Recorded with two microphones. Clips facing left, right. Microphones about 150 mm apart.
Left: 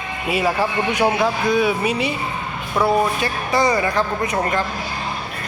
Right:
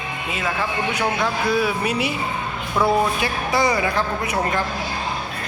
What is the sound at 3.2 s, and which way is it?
Speech, 10° right (ahead or behind).